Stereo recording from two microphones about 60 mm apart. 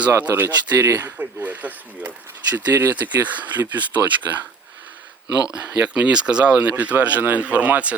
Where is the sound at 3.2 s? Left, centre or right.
Right.